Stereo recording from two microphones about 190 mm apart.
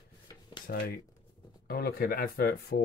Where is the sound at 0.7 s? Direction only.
55° left (ahead or behind).